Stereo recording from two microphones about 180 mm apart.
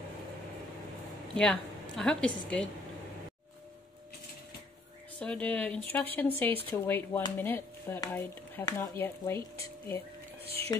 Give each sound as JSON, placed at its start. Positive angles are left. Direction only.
{"t": 1.3, "sound": "a woman's voice", "side_deg": 5}
{"t": 5.2, "sound": "speech", "side_deg": 5}
{"t": 10.4, "sound": "speech", "side_deg": -35}